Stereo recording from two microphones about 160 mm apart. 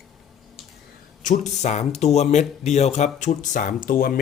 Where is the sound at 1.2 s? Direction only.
55° left (ahead or behind).